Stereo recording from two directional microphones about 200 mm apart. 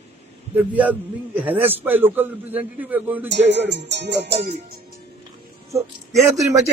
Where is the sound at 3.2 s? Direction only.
60° right (ahead or behind).